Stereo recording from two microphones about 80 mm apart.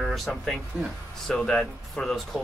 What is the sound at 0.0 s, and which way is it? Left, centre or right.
Speech, centre.